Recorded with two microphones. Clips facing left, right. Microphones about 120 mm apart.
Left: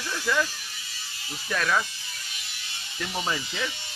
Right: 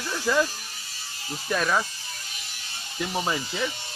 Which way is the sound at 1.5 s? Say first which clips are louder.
Right 1 dB; 15° right (ahead or behind).